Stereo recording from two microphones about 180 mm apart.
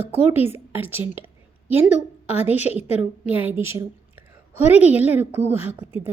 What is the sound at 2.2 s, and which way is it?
Speech, 35° left (ahead or behind).